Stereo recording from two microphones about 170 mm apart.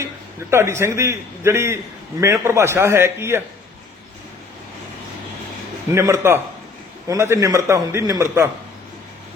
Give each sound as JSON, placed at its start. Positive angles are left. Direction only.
{"t": 0.5, "sound": "a man's voice", "side_deg": -15}
{"t": 5.9, "sound": "a man's voice", "side_deg": -15}